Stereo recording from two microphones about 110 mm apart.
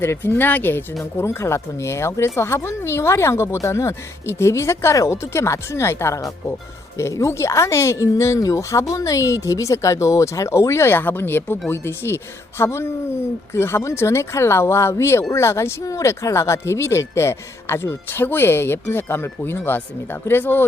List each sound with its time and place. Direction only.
0.0 s speech: 20° left (ahead or behind)